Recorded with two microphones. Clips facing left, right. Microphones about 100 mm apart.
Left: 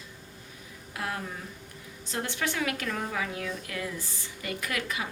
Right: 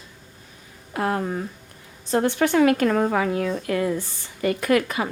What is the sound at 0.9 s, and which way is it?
A woman's voice, 45° right (ahead or behind).